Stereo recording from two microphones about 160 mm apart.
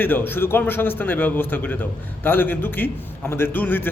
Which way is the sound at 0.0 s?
10° left (ahead or behind).